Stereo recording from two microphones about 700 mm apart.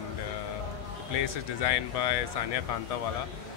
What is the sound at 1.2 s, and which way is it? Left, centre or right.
Speech, left.